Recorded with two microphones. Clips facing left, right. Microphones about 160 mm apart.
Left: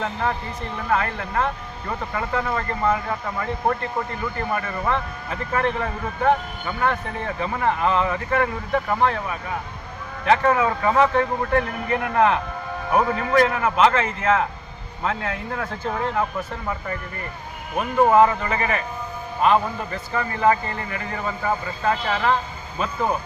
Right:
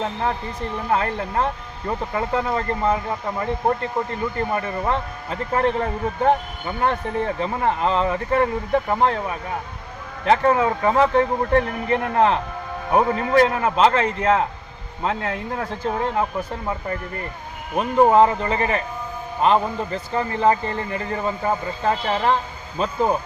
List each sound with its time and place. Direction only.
0.9 s a man's voice: 30° right (ahead or behind)
10.2 s a man's voice: 30° right (ahead or behind)
17.7 s a man's voice: 25° right (ahead or behind)